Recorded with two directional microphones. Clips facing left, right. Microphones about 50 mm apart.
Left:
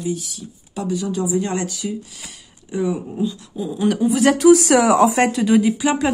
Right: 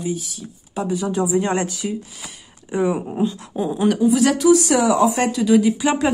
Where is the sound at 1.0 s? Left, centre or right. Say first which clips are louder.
Right 3 dB; right.